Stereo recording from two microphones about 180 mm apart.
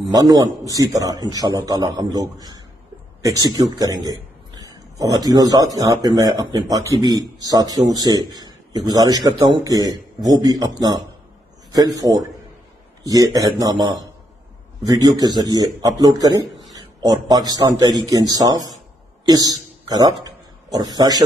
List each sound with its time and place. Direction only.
0.1 s a man's voice: 20° right (ahead or behind)
16.4 s a sound: centre (ahead or behind)
16.7 s a man's voice: 20° right (ahead or behind)